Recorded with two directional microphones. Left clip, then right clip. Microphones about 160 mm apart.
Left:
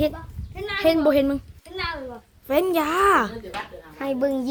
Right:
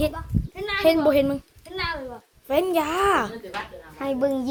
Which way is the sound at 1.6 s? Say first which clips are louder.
Right 2 dB; 20° right (ahead or behind).